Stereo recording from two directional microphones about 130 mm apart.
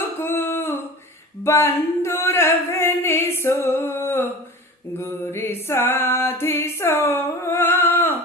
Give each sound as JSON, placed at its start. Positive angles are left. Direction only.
{"t": 0.2, "sound": "a sound", "side_deg": 15}
{"t": 1.5, "sound": "singing", "side_deg": 20}
{"t": 4.9, "sound": "mantra", "side_deg": 20}